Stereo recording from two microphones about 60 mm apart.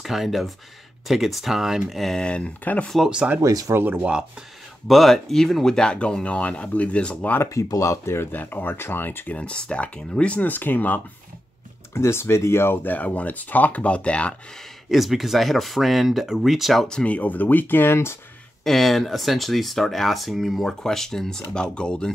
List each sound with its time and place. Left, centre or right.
0.0 s speech: centre
2.2 s speech: centre
3.3 s speech: right
3.7 s speech: right
4.0 s speech: centre
4.8 s speech: centre
7.4 s speech: left
9.4 s speech: centre
11.9 s speech: left; by 14.3 s centre
14.9 s speech: centre
17.0 s speech: left
18.6 s speech: centre